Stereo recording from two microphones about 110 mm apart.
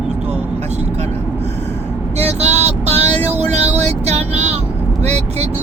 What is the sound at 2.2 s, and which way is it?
Vehicle, 80° right.